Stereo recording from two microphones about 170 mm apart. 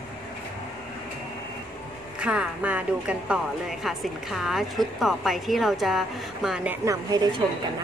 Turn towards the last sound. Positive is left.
turn(degrees=-20)  # may be behind; listen again after turning